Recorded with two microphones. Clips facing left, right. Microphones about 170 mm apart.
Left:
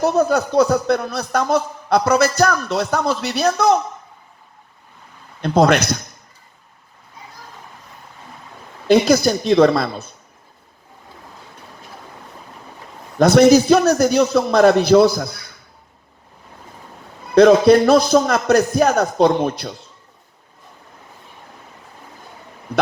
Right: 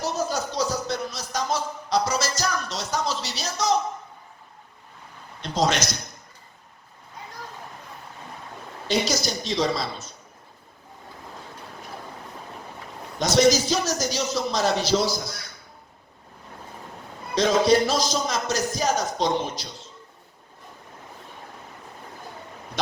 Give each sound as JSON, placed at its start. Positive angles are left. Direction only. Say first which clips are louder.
{"t": 0.0, "sound": "a man's voice", "louder": "left 10 dB", "side_deg": 60}
{"t": 5.4, "sound": "a man's voice", "louder": "left 9 dB", "side_deg": 60}
{"t": 8.9, "sound": "a man's voice", "louder": "left 12 dB", "side_deg": 55}
{"t": 13.1, "sound": "a man's voice", "louder": "left 9 dB", "side_deg": 60}
{"t": 17.3, "sound": "a man's voice", "louder": "left 9 dB", "side_deg": 60}